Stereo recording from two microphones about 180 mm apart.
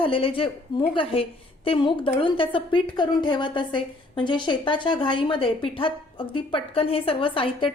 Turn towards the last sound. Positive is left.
turn(degrees=30)  # may be behind; listen again after turning